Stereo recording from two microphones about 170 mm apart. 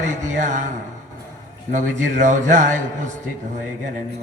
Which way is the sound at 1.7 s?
45° right (ahead or behind).